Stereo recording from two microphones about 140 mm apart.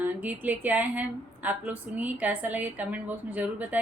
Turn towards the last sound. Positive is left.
turn(degrees=-10)  # may be behind; listen again after turning